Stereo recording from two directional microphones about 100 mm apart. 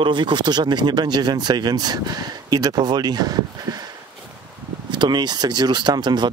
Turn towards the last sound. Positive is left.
turn(degrees=-45)  # may be behind; listen again after turning